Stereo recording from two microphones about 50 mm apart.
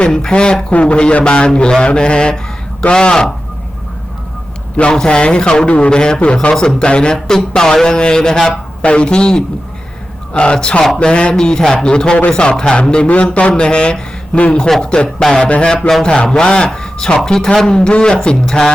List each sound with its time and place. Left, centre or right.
0.0 s a man's voice: centre
4.8 s a man's voice: centre
8.8 s a man's voice: left